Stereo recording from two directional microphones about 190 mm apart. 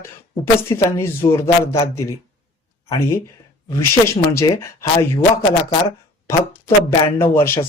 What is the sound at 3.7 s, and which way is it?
Speech, 15° left (ahead or behind).